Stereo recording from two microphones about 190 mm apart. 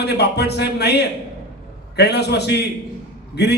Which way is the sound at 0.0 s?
60° left (ahead or behind).